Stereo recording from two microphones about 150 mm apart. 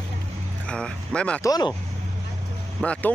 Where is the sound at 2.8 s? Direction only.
10° left (ahead or behind).